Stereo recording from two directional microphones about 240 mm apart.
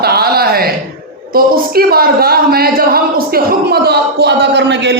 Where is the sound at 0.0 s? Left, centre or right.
Right.